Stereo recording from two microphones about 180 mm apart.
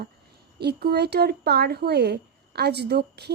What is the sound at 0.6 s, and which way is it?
Speech, 65° right (ahead or behind).